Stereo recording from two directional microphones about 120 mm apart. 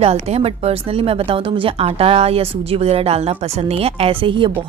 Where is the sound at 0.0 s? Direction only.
60° right (ahead or behind).